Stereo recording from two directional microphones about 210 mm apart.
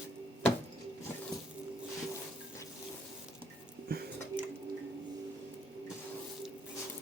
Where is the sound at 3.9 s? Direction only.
45° right (ahead or behind).